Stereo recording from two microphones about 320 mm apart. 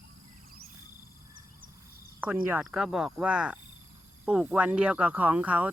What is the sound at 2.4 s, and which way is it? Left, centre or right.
Speech, centre.